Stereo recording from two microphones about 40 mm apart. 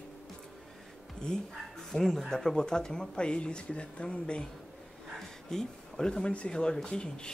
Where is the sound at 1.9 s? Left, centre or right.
Centre; by 4.4 s left.